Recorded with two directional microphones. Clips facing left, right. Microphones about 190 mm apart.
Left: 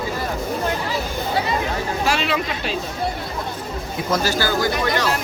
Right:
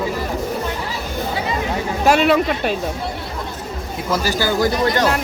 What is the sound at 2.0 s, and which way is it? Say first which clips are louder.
Speech: right 10 dB; 50° right (ahead or behind).